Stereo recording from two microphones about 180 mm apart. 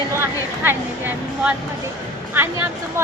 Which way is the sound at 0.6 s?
10° right (ahead or behind).